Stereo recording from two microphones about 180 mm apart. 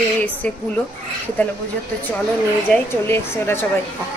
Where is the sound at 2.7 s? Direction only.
15° left (ahead or behind).